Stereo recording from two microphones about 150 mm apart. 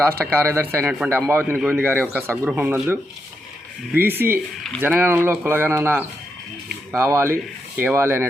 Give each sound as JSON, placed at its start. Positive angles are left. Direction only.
{"t": 0.3, "sound": "speech", "side_deg": -15}
{"t": 4.2, "sound": "speech", "side_deg": -15}